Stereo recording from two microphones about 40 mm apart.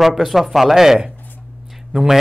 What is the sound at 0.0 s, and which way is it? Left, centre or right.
A woman's voice, centre.